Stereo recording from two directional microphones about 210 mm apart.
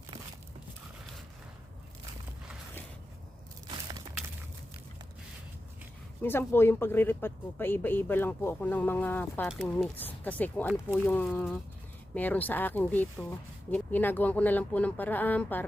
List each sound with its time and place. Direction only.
6.2 s speech: 10° left (ahead or behind)